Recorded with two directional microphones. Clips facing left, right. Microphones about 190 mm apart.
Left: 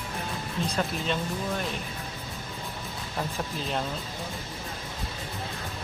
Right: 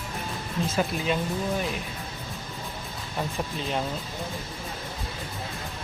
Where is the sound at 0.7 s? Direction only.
5° right (ahead or behind).